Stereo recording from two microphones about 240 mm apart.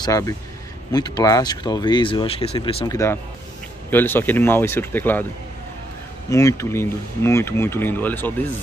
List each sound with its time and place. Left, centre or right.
0.0 s speech: centre
6.3 s speech: centre